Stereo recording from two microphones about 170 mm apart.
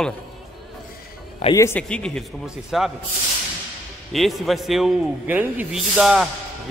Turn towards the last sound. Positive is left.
turn(degrees=-5)  # may be behind; listen again after turning